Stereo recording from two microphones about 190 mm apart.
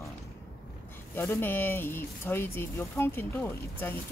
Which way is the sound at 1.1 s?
10° left (ahead or behind).